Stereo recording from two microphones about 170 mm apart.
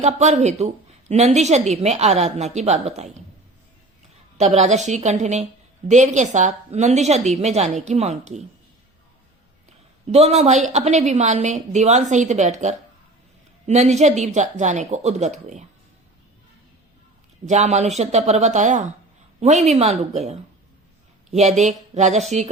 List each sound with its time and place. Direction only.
0.0 s a woman's voice: 40° right (ahead or behind)
4.4 s a woman's voice: 40° right (ahead or behind)
9.6 s a woman's voice: 40° right (ahead or behind)
17.4 s a woman's voice: 40° right (ahead or behind)